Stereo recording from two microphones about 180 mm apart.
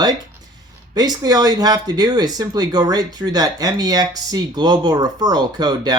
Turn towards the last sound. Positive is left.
turn(degrees=-20)  # may be behind; listen again after turning